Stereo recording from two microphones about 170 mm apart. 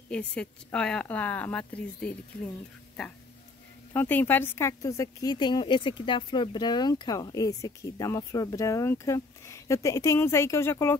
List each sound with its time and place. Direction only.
0.1 s speech: 5° left (ahead or behind)
3.9 s speech: 10° left (ahead or behind)